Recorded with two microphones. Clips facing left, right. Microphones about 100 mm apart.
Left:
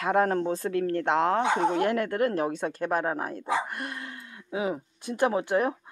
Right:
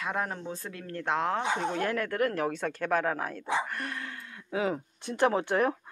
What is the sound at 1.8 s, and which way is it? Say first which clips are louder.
Speech: left 4 dB; 25° left (ahead or behind).